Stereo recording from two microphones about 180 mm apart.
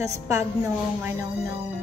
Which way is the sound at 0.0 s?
15° right (ahead or behind).